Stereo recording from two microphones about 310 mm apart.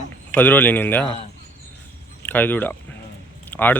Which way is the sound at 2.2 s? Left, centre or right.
Centre.